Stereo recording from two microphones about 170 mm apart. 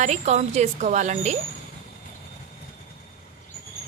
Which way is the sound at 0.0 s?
45° right (ahead or behind).